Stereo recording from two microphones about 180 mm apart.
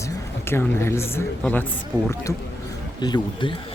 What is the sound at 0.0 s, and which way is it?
A woman's voice, 15° left (ahead or behind).